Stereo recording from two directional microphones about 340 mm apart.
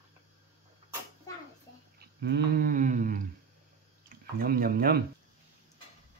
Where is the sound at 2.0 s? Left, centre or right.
Right.